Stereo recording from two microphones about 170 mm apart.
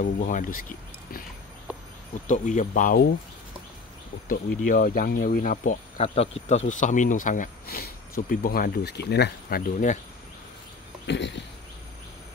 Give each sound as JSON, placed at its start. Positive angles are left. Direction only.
{"t": 0.0, "sound": "speech", "side_deg": 55}
{"t": 2.2, "sound": "speech", "side_deg": 45}
{"t": 4.3, "sound": "speech", "side_deg": 55}
{"t": 11.1, "sound": "speech", "side_deg": 90}